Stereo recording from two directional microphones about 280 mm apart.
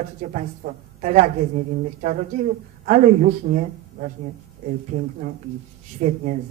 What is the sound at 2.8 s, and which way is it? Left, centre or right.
Speech, right.